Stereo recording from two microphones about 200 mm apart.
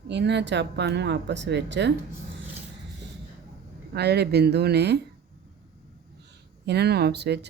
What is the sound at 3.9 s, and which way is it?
Speech, 55° right (ahead or behind).